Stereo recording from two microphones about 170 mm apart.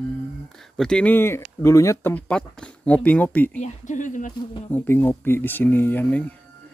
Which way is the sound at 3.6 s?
45° left (ahead or behind).